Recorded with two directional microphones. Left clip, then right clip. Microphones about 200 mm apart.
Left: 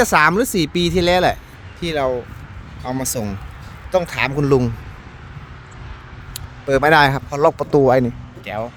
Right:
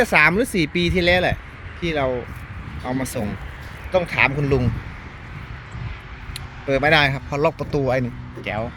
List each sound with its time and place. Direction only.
0.0 s speech: 25° left (ahead or behind)
6.3 s speech: 25° left (ahead or behind)